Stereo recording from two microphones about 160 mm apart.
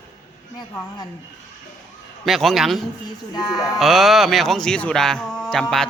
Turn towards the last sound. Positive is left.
turn(degrees=5)  # may be behind; listen again after turning